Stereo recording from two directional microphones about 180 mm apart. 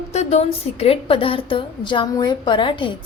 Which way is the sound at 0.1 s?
35° left (ahead or behind).